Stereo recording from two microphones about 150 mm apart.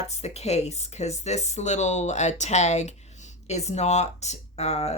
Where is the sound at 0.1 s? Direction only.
45° left (ahead or behind).